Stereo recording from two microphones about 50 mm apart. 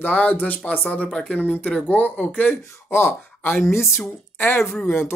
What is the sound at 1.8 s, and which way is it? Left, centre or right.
Speech, left.